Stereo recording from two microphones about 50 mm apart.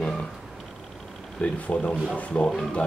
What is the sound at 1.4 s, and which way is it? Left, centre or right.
Speech, left.